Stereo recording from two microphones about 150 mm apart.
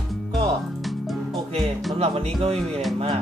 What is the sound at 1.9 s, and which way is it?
Speech, 40° right (ahead or behind).